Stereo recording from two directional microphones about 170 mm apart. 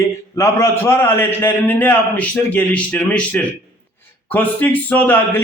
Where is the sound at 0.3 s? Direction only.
20° left (ahead or behind).